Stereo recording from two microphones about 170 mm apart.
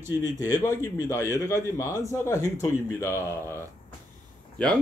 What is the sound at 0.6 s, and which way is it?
A man's voice, 20° left (ahead or behind).